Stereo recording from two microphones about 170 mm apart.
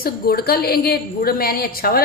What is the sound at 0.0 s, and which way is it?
A woman's voice, 65° left (ahead or behind).